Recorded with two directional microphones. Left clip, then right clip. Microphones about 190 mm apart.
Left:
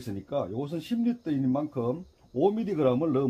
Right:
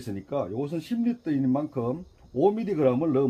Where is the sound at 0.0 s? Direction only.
20° left (ahead or behind).